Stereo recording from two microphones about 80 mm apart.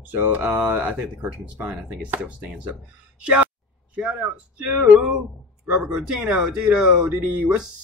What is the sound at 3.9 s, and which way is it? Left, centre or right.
Speech, centre.